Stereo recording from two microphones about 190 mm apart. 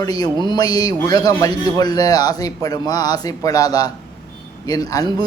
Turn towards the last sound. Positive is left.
turn(degrees=20)  # may be behind; listen again after turning